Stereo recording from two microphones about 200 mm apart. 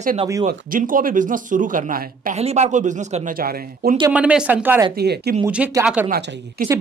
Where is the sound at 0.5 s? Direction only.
45° right (ahead or behind).